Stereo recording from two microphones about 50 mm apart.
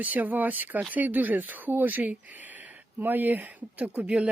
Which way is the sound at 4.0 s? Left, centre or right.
Right.